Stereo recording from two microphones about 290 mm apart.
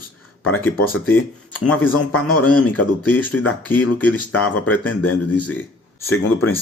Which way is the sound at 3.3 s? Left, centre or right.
Left.